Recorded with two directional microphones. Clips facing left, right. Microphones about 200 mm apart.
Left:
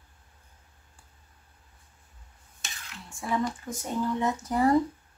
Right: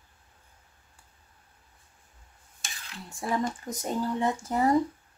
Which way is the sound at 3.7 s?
40° right (ahead or behind).